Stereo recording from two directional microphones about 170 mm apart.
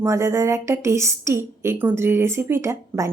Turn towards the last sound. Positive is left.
turn(degrees=-15)  # may be behind; listen again after turning